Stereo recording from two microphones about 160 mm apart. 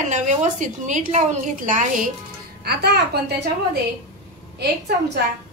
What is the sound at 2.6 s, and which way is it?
Speech, 90° right.